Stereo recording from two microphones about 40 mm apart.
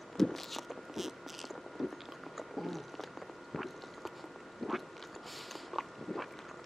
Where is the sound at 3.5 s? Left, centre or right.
Centre.